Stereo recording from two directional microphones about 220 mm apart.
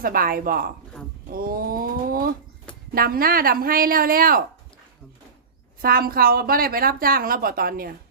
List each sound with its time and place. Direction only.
0.0 s a woman's voice: 40° right (ahead or behind)
5.8 s a woman's voice: 40° right (ahead or behind)